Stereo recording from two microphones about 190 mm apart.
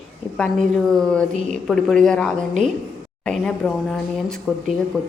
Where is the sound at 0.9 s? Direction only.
5° left (ahead or behind).